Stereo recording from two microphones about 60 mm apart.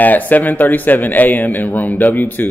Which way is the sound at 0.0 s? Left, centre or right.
Left.